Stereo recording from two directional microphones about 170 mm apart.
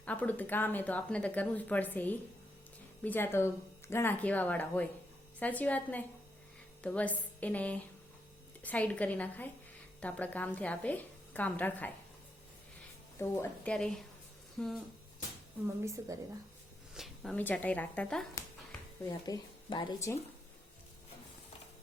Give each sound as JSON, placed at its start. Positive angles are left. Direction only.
{"t": 0.0, "sound": "speech", "side_deg": 10}
{"t": 13.1, "sound": "speech", "side_deg": 15}
{"t": 15.6, "sound": "a woman's voice", "side_deg": -15}
{"t": 16.9, "sound": "a sound", "side_deg": 0}
{"t": 17.3, "sound": "speech", "side_deg": 10}
{"t": 19.0, "sound": "speech", "side_deg": 20}